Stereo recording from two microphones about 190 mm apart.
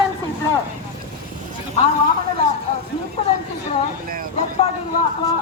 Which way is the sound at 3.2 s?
30° left (ahead or behind).